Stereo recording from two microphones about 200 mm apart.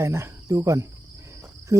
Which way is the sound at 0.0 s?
15° right (ahead or behind).